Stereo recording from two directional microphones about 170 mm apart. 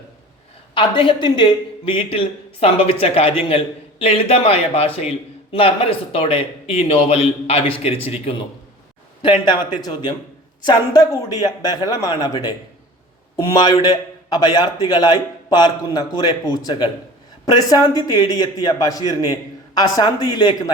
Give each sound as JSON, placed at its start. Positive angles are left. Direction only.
{"t": 0.7, "sound": "a man's voice", "side_deg": 30}